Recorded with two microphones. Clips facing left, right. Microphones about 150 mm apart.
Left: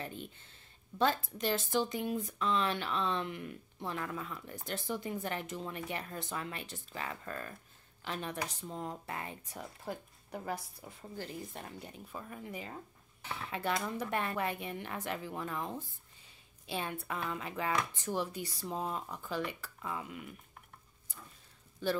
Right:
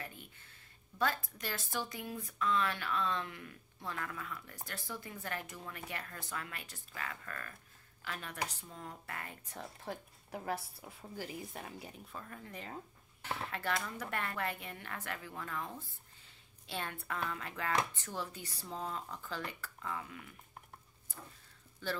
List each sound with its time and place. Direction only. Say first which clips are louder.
0.0 s speech: left 6 dB; 25° left (ahead or behind)
9.6 s speech: left 1 dB; centre (ahead or behind)
12.1 s a woman's voice: left 7 dB; 10° left (ahead or behind)